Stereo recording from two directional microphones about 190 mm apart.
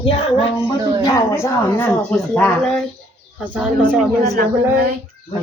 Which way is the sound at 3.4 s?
5° right (ahead or behind).